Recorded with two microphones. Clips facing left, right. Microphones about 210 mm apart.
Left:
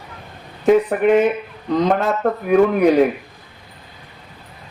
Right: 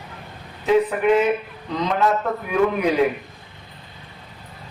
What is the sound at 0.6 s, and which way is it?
A man's voice, 50° left (ahead or behind).